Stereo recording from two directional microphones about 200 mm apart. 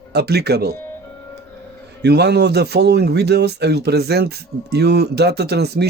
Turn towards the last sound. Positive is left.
turn(degrees=-55)  # may be behind; listen again after turning